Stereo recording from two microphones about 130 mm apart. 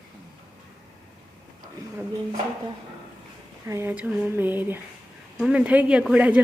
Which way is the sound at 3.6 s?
20° right (ahead or behind).